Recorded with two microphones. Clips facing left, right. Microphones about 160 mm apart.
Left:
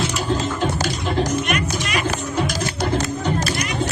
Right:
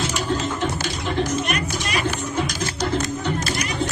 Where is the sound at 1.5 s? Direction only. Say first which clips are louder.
Left 2 dB; 35° right (ahead or behind).